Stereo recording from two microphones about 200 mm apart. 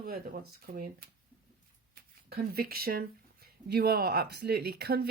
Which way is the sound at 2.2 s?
50° right (ahead or behind).